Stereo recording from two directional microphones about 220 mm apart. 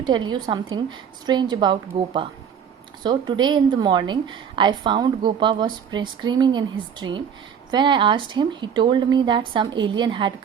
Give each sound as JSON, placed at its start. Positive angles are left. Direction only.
{"t": 0.0, "sound": "a woman's voice", "side_deg": -20}
{"t": 3.0, "sound": "a woman's voice", "side_deg": -20}